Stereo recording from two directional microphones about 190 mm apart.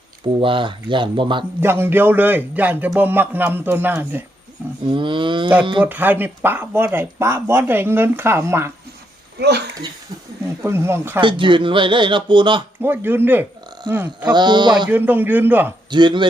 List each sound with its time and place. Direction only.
0.3 s speech: 25° right (ahead or behind)
1.6 s speech: 10° right (ahead or behind)
4.9 s speech: 25° right (ahead or behind)
5.8 s speech: 10° right (ahead or behind)
10.6 s speech: 15° right (ahead or behind)
11.2 s speech: 25° right (ahead or behind)
12.8 s speech: 10° right (ahead or behind)
14.3 s speech: 25° right (ahead or behind)
14.8 s speech: 10° right (ahead or behind)
15.9 s speech: 25° right (ahead or behind)